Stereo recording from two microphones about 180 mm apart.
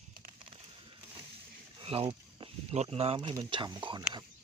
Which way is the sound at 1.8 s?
30° right (ahead or behind).